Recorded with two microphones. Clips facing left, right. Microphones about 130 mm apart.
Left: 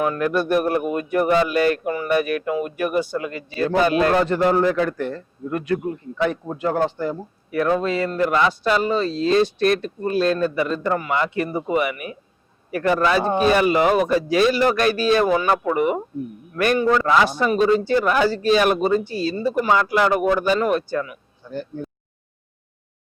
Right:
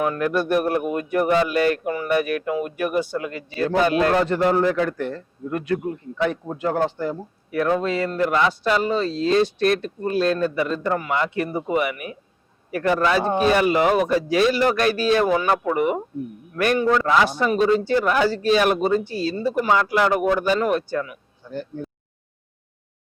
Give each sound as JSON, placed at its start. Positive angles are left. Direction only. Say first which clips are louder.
{"t": 0.0, "sound": "a man's voice", "louder": "left 1 dB", "side_deg": 15}